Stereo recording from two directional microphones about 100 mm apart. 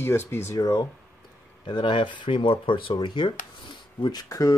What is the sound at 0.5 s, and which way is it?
Speech, 40° left (ahead or behind).